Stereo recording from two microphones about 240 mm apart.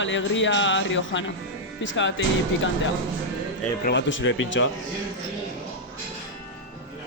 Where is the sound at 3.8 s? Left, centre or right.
Left.